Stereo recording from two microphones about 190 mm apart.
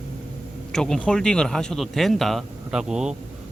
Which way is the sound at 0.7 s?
5° left (ahead or behind).